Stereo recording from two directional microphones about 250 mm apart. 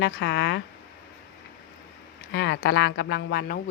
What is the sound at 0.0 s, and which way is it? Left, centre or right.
Speech, left.